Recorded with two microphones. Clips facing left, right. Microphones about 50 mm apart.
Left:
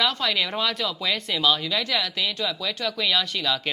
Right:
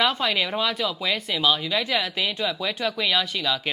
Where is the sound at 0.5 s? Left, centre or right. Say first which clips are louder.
Right 1 dB; centre.